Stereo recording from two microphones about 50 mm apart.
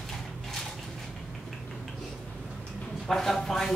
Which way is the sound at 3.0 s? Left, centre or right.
Centre.